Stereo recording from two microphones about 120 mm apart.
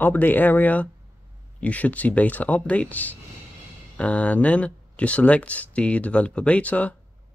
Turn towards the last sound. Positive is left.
turn(degrees=10)  # may be behind; listen again after turning